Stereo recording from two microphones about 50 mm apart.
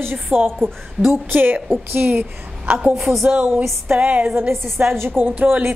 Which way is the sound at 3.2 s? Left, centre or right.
Right.